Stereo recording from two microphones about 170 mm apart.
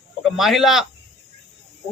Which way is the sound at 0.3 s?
Centre (ahead or behind).